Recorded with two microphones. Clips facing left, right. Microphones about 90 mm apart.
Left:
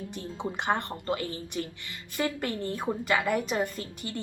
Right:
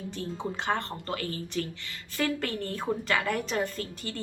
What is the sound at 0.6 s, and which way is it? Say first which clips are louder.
A woman's voice: left 2 dB; 15° left (ahead or behind).